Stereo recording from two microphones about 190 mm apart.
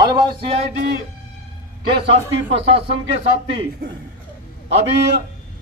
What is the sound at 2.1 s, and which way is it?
Speech, 70° right (ahead or behind).